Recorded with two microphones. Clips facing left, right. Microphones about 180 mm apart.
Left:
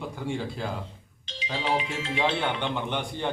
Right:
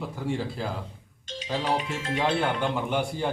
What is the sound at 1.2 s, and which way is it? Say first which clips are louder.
Music: right 4 dB; 45° right (ahead or behind).